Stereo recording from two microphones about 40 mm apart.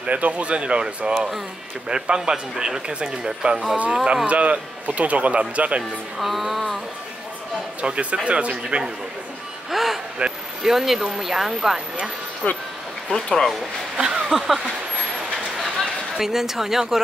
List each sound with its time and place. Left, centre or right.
0.0 s a man's voice: right
3.4 s a man's voice: right
4.3 s speech: right
6.1 s music: centre
7.8 s a man's voice: right
9.7 s music: centre
10.2 s a sound: right
10.6 s speech: centre
12.4 s speech: left
13.1 s speech: centre
13.9 s a sound: centre
16.2 s speech: centre